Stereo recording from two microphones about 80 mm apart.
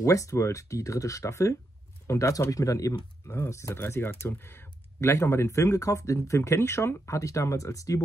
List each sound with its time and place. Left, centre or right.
0.0 s speech: left
3.3 s speech: left